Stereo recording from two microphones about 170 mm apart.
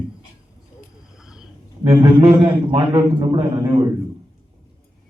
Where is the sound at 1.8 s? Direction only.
25° right (ahead or behind).